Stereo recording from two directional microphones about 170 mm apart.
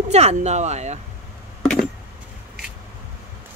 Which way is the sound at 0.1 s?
40° right (ahead or behind).